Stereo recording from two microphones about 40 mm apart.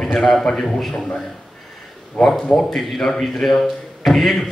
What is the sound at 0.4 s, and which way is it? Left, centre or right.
Speech, centre.